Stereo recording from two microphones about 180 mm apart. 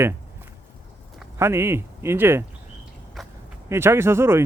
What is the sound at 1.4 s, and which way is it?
Speech, 15° right (ahead or behind).